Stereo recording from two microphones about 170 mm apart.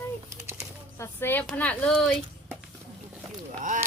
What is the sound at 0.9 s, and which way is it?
Speech, 15° left (ahead or behind).